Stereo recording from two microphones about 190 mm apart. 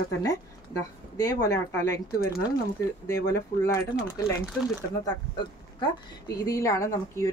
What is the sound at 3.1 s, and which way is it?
Speech, 15° left (ahead or behind).